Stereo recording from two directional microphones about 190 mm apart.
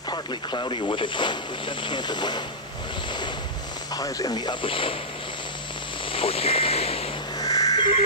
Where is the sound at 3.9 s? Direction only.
20° left (ahead or behind).